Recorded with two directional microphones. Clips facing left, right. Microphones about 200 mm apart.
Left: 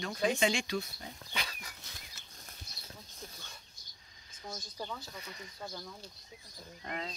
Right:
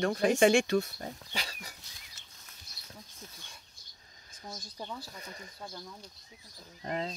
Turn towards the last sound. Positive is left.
turn(degrees=-35)  # may be behind; listen again after turning